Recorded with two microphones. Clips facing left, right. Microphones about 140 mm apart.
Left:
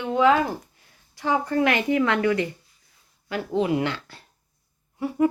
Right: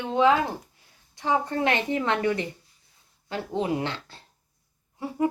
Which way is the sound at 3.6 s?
25° right (ahead or behind).